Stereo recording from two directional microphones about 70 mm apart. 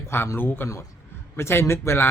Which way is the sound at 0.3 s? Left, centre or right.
Left.